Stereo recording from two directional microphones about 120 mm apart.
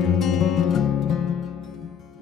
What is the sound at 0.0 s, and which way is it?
Music, centre (ahead or behind).